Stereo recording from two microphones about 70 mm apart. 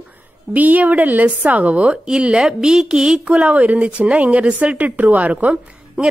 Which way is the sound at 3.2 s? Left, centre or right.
Centre.